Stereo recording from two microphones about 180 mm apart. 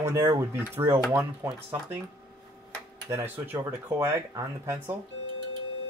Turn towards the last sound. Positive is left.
turn(degrees=-15)  # may be behind; listen again after turning